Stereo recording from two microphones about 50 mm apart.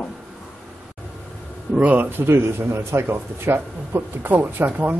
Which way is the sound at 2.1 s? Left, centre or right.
Right.